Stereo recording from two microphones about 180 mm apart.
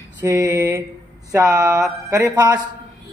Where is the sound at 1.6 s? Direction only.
20° right (ahead or behind).